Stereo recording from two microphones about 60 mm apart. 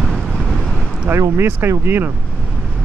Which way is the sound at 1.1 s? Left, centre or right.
Right.